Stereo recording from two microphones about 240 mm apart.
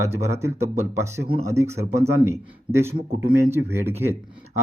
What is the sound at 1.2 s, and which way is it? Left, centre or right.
Speech, right.